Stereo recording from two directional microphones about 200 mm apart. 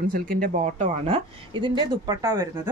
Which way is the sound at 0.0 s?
45° right (ahead or behind).